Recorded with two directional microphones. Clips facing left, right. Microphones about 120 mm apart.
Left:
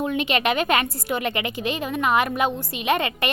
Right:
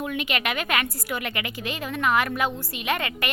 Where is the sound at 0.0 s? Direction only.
25° left (ahead or behind).